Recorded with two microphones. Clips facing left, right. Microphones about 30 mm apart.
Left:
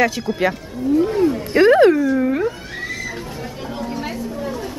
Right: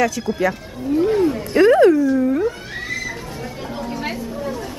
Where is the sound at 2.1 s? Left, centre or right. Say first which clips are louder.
Right 1 dB; left.